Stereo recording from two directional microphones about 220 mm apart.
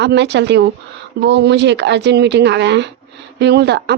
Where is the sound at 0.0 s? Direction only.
50° right (ahead or behind).